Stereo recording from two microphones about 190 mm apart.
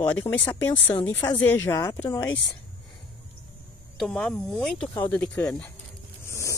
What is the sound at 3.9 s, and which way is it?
Speech, 5° left (ahead or behind).